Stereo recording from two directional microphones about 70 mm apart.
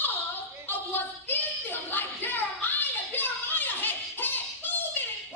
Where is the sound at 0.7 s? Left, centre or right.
Left.